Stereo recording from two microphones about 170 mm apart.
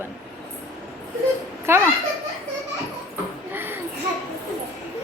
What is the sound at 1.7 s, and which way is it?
Speech, 15° right (ahead or behind).